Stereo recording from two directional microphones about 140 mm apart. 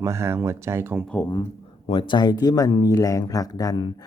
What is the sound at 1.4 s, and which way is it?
Speech, 45° left (ahead or behind).